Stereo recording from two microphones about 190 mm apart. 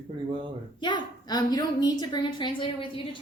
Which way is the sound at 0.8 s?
25° left (ahead or behind).